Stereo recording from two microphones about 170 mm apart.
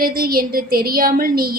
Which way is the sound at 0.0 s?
60° right (ahead or behind).